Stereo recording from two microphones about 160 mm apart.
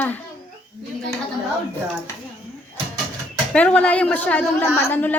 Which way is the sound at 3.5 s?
5° left (ahead or behind).